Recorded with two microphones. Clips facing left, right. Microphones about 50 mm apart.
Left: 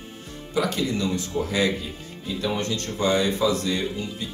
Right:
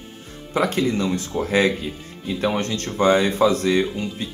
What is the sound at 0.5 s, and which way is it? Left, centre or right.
A man's voice, right.